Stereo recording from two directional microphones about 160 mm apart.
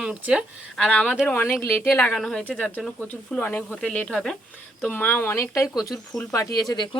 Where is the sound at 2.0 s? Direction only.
5° left (ahead or behind).